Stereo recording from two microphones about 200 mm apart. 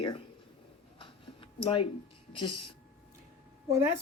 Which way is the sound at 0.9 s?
25° left (ahead or behind).